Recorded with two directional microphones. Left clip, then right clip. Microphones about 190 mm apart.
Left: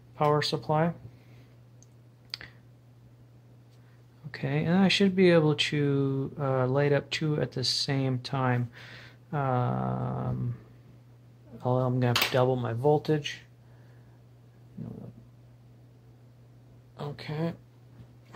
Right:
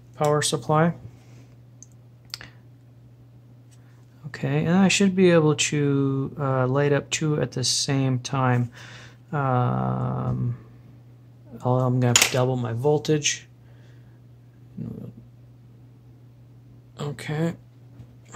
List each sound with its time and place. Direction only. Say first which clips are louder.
0.1 s speech: right 3 dB; 5° right (ahead or behind)
2.3 s a sound: right 2 dB; 5° right (ahead or behind)
4.3 s speech: right 5 dB; 5° right (ahead or behind)
11.5 s speech: right 4 dB; 5° right (ahead or behind)
16.9 s speech: right 6 dB; 20° right (ahead or behind)